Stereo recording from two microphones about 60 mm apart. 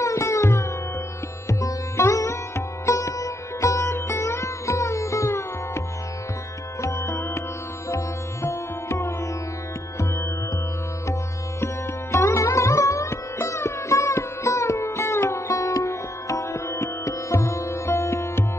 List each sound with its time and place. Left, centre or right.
0.0 s sitar: left
6.8 s music: left
7.9 s sitar: left
11.6 s sitar: left